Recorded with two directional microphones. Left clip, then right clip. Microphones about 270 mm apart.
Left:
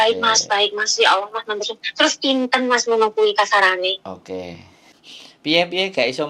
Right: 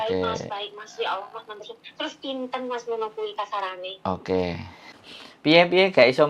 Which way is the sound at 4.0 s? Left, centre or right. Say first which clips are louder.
Right 5 dB; right.